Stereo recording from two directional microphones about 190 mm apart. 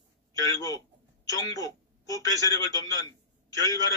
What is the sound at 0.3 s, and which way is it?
A man's voice, 15° left (ahead or behind).